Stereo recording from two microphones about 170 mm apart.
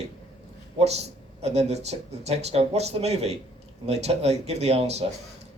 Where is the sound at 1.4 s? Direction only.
40° right (ahead or behind).